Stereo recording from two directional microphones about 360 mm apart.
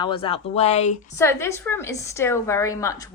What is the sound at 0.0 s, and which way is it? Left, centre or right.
A woman's voice, centre.